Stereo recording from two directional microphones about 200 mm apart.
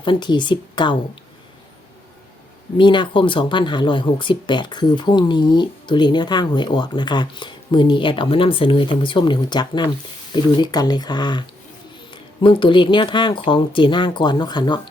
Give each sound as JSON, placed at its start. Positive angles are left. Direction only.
{"t": 0.0, "sound": "speech", "side_deg": 25}
{"t": 2.7, "sound": "speech", "side_deg": 25}